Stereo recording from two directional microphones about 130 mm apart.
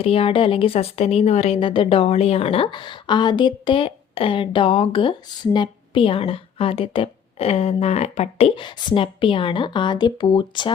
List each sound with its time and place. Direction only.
0.0 s a woman's voice: 45° left (ahead or behind)
1.5 s a woman's voice: 40° left (ahead or behind)